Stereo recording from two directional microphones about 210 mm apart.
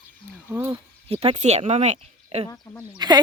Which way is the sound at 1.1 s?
30° right (ahead or behind).